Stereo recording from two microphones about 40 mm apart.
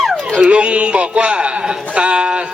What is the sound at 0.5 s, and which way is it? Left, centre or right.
A man's voice, right.